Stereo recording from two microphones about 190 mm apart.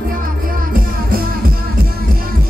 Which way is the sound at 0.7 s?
50° right (ahead or behind).